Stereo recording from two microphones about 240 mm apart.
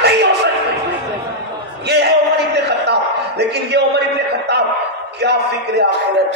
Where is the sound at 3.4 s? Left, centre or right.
Right.